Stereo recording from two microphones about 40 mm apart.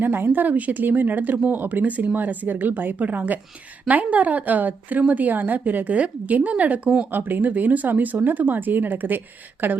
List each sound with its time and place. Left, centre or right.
0.0 s speech: right
0.5 s a woman's voice: right
7.1 s speech: right